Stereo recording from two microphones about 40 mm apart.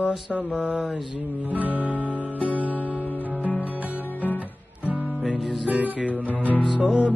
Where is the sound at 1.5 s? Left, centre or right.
Right.